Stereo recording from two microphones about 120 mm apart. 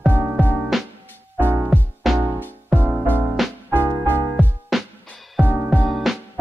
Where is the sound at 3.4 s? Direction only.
Centre (ahead or behind).